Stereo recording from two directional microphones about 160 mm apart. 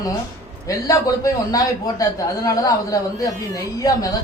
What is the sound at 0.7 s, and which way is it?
A man's voice, 20° left (ahead or behind).